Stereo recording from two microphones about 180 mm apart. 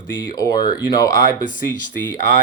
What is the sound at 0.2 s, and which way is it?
Speech, 20° left (ahead or behind).